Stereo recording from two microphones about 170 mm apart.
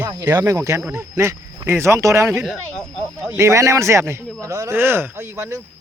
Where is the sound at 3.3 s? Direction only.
15° right (ahead or behind).